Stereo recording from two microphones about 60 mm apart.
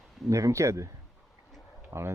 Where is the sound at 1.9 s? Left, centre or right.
Right.